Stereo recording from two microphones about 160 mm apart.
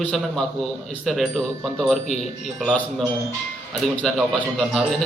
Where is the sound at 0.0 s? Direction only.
Centre (ahead or behind).